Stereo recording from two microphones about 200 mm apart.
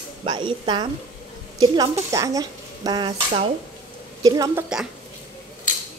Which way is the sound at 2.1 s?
15° right (ahead or behind).